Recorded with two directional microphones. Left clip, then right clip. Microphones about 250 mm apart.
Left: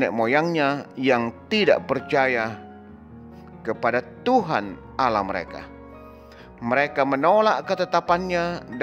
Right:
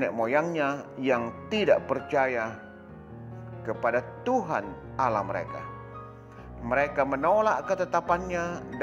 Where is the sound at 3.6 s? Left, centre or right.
Left.